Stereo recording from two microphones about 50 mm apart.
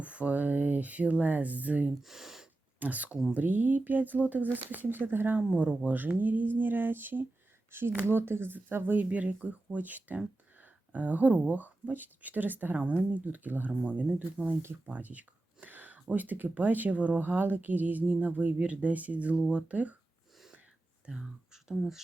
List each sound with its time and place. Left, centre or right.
0.0 s speech: right
2.0 s speech: centre
2.7 s speech: right
5.5 s speech: right
21.1 s speech: right
21.5 s a sound: centre